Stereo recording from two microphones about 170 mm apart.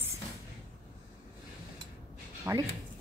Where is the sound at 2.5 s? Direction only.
15° right (ahead or behind).